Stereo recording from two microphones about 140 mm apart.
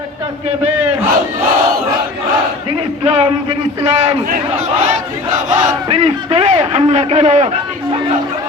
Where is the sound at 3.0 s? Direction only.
45° right (ahead or behind).